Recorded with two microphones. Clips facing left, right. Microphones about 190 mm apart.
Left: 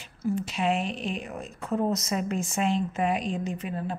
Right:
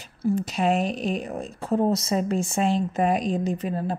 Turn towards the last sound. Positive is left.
turn(degrees=-35)  # may be behind; listen again after turning